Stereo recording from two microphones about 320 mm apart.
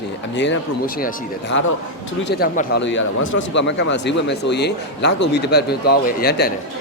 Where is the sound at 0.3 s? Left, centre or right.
Left.